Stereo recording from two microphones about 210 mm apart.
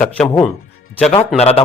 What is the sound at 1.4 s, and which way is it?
Speech, 30° left (ahead or behind).